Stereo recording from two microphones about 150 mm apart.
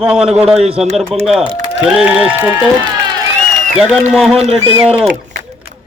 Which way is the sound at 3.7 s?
Centre (ahead or behind).